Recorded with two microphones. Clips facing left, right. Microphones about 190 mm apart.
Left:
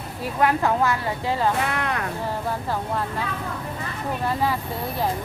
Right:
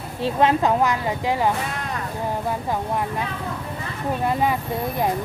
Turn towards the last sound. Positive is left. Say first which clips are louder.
# right 2 dB
turn(degrees=-20)  # may be behind; listen again after turning